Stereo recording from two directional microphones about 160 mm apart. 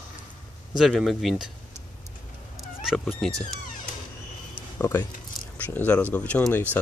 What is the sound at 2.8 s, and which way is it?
Speech, centre (ahead or behind).